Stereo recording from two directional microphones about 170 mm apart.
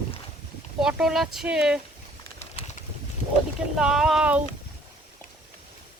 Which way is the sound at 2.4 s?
40° left (ahead or behind).